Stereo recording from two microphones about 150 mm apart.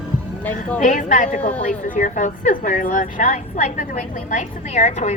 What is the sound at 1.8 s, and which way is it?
A woman's voice, 60° left (ahead or behind).